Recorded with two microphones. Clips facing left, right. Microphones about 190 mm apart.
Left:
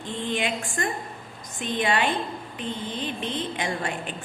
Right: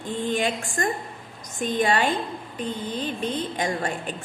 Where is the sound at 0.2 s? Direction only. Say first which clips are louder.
Right 2 dB; 45° right (ahead or behind).